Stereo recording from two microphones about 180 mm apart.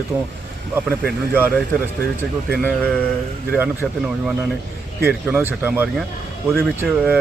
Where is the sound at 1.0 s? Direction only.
10° right (ahead or behind).